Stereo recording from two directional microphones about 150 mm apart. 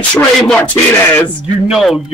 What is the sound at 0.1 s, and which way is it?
Speech, 5° left (ahead or behind).